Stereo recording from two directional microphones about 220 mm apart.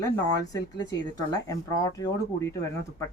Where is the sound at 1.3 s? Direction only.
15° left (ahead or behind).